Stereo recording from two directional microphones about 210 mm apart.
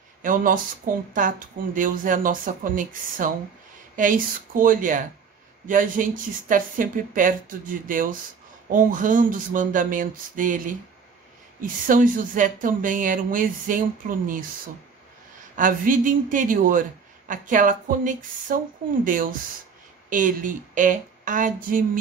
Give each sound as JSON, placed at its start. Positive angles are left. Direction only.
{"t": 0.2, "sound": "speech", "side_deg": -40}
{"t": 11.9, "sound": "speech", "side_deg": -40}
{"t": 15.5, "sound": "speech", "side_deg": -40}